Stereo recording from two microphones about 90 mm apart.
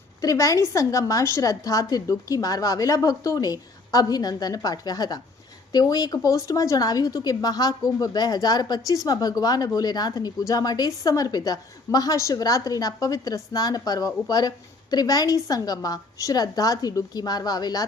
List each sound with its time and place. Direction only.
0.2 s a woman's voice: 40° left (ahead or behind)